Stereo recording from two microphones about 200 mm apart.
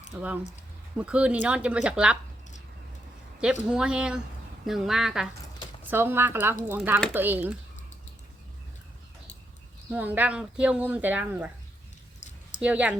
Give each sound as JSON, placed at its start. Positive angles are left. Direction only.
{"t": 0.1, "sound": "speech", "side_deg": -5}
{"t": 3.4, "sound": "speech", "side_deg": -5}
{"t": 9.9, "sound": "speech", "side_deg": -10}
{"t": 12.5, "sound": "speech", "side_deg": -5}